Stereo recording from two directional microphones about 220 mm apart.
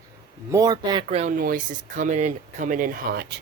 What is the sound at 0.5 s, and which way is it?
Speech, 15° right (ahead or behind).